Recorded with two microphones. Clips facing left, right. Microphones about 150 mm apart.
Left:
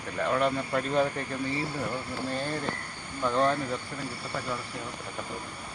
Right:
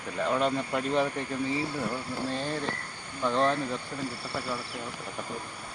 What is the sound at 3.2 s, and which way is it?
Speech, 5° left (ahead or behind).